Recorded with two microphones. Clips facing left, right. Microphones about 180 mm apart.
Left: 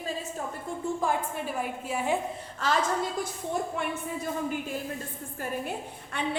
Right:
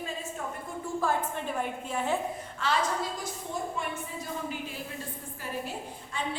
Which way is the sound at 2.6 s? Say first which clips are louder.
Left 2 dB; 40° left (ahead or behind).